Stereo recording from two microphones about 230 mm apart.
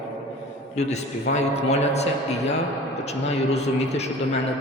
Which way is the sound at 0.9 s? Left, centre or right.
Left.